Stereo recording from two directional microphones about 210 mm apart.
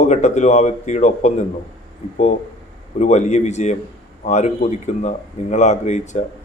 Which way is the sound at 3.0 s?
35° left (ahead or behind).